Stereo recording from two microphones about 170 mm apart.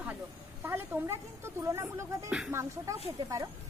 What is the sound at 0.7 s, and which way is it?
A woman's voice, 15° right (ahead or behind).